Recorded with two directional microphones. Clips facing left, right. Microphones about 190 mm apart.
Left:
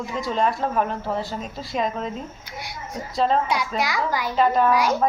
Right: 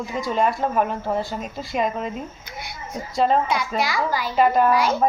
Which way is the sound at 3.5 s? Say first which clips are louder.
Right 1 dB; 15° left (ahead or behind).